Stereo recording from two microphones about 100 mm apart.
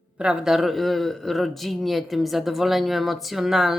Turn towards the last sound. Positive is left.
turn(degrees=-5)  # may be behind; listen again after turning